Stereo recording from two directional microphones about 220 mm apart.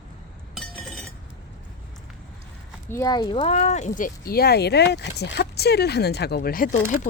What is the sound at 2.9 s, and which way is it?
Speech, 15° left (ahead or behind).